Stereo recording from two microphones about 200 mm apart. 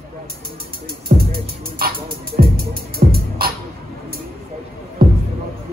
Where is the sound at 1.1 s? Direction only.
50° right (ahead or behind).